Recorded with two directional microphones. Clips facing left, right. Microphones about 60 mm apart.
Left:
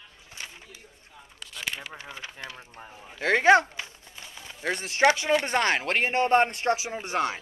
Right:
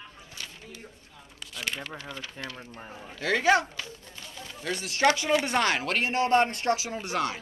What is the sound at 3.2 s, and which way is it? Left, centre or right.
Speech, left.